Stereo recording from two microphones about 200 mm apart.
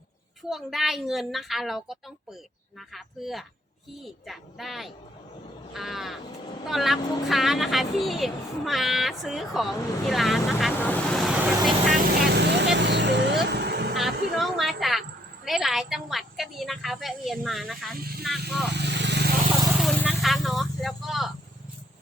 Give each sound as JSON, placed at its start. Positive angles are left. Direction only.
{"t": 0.4, "sound": "speech", "side_deg": 0}
{"t": 10.8, "sound": "vehicle", "side_deg": 5}
{"t": 12.2, "sound": "vehicle", "side_deg": -60}
{"t": 14.3, "sound": "speech", "side_deg": 0}
{"t": 17.9, "sound": "speech", "side_deg": -50}
{"t": 18.2, "sound": "speech", "side_deg": 0}
{"t": 18.7, "sound": "vehicle", "side_deg": -60}
{"t": 19.8, "sound": "vehicle", "side_deg": 5}
{"t": 20.1, "sound": "snake", "side_deg": 0}